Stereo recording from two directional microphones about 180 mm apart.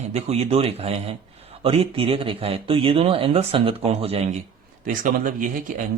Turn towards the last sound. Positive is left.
turn(degrees=-45)  # may be behind; listen again after turning